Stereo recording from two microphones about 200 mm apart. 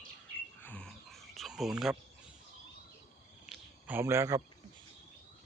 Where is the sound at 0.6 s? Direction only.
5° left (ahead or behind).